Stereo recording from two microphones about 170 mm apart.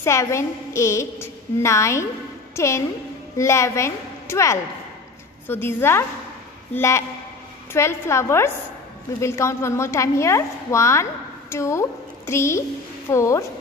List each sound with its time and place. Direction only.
0.0 s a woman's voice: 15° left (ahead or behind)